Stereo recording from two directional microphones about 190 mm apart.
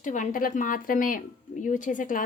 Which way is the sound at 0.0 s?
40° left (ahead or behind).